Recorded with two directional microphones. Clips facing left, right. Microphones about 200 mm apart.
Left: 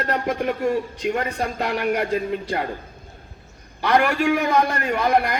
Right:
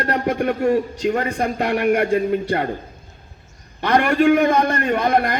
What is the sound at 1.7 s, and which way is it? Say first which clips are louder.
Speech: right 5 dB; 60° right (ahead or behind).